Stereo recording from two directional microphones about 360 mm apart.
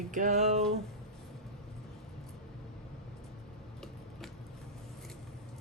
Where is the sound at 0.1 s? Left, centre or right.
Centre.